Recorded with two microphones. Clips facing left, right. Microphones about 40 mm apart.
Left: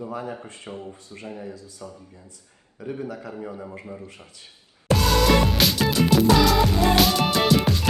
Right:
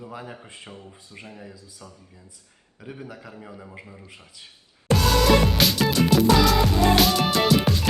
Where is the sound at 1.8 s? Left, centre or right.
Centre.